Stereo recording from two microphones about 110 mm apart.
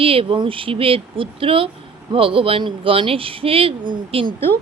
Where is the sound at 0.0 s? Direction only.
55° right (ahead or behind).